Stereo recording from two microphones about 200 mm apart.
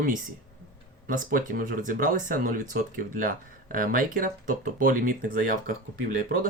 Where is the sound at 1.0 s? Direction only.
40° right (ahead or behind).